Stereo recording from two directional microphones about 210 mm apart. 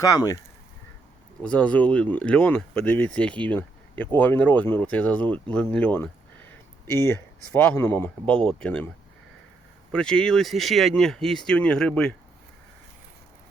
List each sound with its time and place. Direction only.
0.0 s speech: 15° left (ahead or behind)
1.4 s speech: 5° left (ahead or behind)
6.5 s a sound: 10° left (ahead or behind)
7.5 s speech: 10° left (ahead or behind)
9.9 s speech: 5° left (ahead or behind)